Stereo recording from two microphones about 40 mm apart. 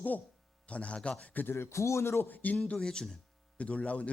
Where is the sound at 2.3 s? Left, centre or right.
Left.